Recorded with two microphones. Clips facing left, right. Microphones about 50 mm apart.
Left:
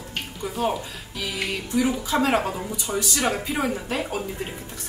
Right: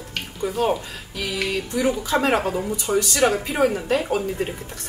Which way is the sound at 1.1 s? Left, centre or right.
Right.